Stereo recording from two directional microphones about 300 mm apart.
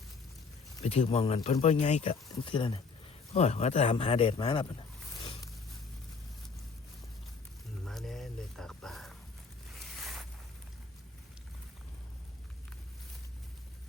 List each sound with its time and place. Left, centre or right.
0.8 s speech: left
7.9 s music: centre
9.7 s zipper: centre